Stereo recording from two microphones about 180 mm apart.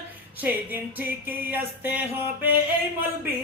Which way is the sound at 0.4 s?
10° right (ahead or behind).